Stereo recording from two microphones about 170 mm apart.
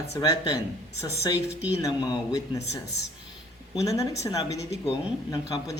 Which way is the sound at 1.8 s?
20° left (ahead or behind).